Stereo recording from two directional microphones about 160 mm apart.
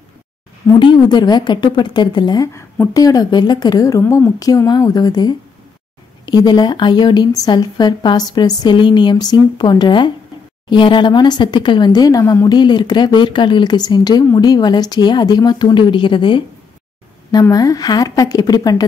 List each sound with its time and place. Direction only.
0.7 s speech: 25° left (ahead or behind)